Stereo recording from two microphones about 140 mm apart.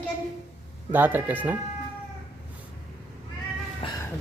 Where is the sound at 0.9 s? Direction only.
15° right (ahead or behind).